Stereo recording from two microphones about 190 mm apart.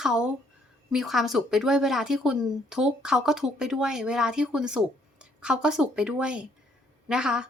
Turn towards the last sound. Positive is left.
turn(degrees=-5)  # may be behind; listen again after turning